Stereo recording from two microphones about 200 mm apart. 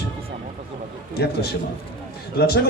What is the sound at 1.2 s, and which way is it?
Speech, 55° left (ahead or behind).